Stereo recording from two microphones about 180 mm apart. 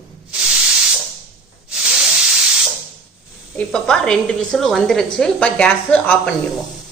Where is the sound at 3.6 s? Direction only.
5° left (ahead or behind).